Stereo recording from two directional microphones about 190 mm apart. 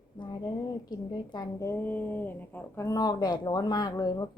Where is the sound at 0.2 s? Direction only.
20° left (ahead or behind).